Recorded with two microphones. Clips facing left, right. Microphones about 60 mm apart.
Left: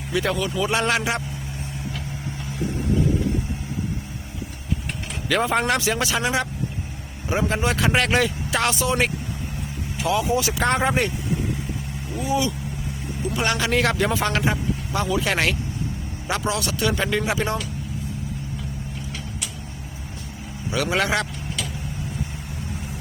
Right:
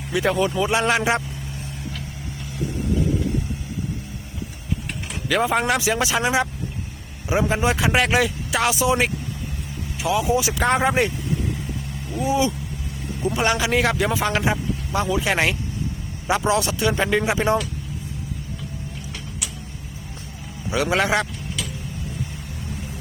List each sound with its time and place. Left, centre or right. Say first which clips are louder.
0.1 s speech: right 2 dB; centre
0.3 s a man's voice: right 3 dB; right
5.3 s speech: right 1 dB; centre
6.0 s a man's voice: right 2 dB; centre
12.2 s a man's voice: right 2 dB; right
20.7 s a man's voice: right 2 dB; centre